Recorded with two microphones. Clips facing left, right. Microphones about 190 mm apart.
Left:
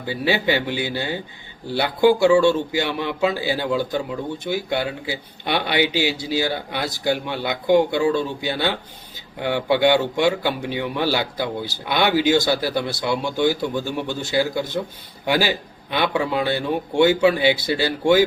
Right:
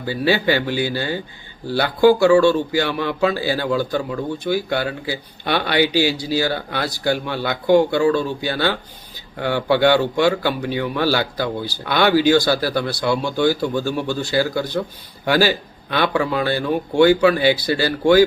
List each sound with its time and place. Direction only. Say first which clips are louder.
0.0 s speech: right 3 dB; 20° left (ahead or behind)